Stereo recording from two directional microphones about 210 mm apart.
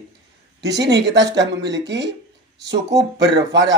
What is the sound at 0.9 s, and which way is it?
Speech, 55° right (ahead or behind).